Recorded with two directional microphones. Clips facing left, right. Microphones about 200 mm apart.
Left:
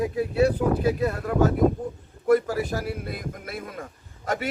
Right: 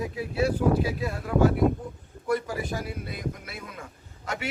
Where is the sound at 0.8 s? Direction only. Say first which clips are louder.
Left 5 dB; 50° left (ahead or behind).